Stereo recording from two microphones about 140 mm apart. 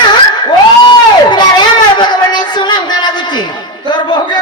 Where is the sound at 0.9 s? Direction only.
30° left (ahead or behind).